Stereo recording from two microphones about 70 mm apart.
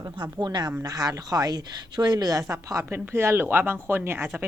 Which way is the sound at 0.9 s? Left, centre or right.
Right.